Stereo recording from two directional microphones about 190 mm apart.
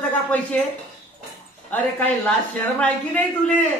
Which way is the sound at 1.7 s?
5° left (ahead or behind).